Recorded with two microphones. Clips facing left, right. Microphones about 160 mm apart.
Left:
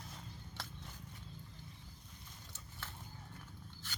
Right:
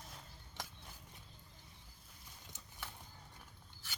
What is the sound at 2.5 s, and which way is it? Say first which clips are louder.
Horse: right 1 dB; 15° right (ahead or behind).